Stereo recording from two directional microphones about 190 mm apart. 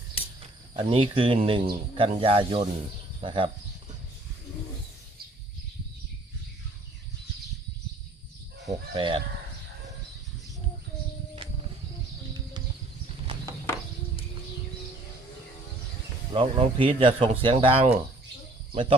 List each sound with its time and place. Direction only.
0.2 s cricket: 30° left (ahead or behind)
0.7 s speech: 30° right (ahead or behind)
8.6 s speech: 25° right (ahead or behind)
16.3 s speech: 30° right (ahead or behind)